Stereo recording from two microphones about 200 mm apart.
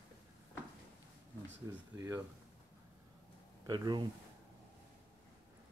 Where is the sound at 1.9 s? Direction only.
15° right (ahead or behind).